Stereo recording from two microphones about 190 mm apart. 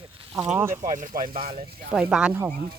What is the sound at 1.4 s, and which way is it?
Speech, 30° right (ahead or behind).